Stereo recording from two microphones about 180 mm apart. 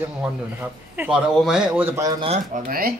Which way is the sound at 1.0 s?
5° right (ahead or behind).